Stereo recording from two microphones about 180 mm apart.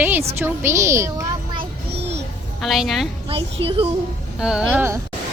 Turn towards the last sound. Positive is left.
turn(degrees=-10)  # may be behind; listen again after turning